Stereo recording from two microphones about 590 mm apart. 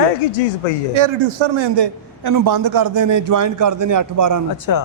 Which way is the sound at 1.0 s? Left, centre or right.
Right.